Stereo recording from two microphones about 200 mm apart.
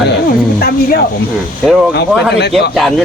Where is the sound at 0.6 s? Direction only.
50° left (ahead or behind).